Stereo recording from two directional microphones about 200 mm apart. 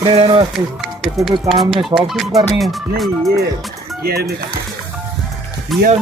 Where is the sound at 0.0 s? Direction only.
25° right (ahead or behind).